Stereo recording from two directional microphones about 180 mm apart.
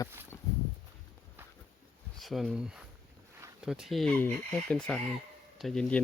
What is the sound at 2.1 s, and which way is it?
Speech, centre (ahead or behind).